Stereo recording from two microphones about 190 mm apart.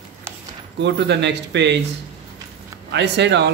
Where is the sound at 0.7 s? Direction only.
65° right (ahead or behind).